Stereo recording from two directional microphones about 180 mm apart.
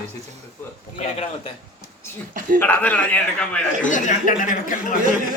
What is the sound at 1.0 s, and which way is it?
Speech, 35° left (ahead or behind).